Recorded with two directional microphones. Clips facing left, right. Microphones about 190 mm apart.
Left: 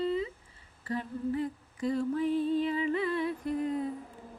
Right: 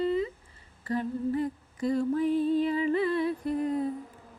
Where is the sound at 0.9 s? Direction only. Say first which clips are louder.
Right 4 dB; 40° right (ahead or behind).